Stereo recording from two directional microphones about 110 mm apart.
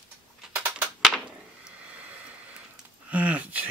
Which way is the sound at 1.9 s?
10° right (ahead or behind).